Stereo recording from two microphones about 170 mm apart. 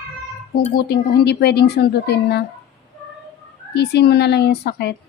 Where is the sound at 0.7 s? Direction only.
80° left.